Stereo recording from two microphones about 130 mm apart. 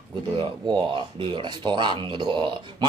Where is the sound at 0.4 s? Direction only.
40° right (ahead or behind).